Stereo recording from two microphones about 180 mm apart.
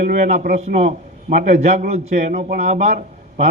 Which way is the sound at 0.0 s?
45° right (ahead or behind).